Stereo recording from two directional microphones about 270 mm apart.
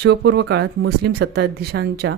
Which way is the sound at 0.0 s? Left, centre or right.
Right.